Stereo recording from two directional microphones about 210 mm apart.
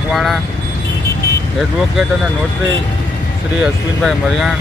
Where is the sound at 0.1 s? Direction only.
Centre (ahead or behind).